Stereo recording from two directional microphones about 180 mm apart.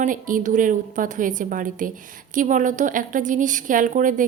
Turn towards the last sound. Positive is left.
turn(degrees=-45)  # may be behind; listen again after turning